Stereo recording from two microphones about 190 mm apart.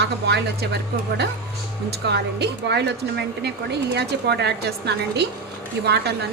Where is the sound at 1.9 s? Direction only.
60° right (ahead or behind).